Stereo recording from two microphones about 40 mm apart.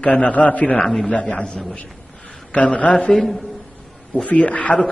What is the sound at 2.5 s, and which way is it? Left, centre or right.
Speech, left.